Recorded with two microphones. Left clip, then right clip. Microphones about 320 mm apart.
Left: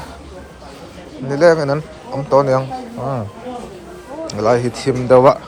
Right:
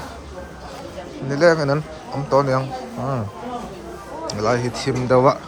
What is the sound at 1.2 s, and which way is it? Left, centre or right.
A man's voice, centre.